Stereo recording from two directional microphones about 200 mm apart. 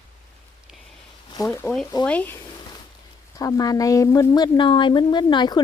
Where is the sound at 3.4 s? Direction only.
15° left (ahead or behind).